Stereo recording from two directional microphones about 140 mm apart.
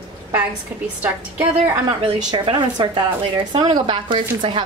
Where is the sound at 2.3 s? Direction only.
35° right (ahead or behind).